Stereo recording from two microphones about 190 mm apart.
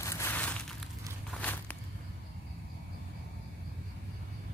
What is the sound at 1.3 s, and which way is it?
Walk, 5° left (ahead or behind).